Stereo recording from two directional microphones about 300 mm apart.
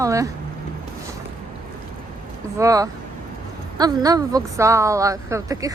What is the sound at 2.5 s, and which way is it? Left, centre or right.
Speech, centre.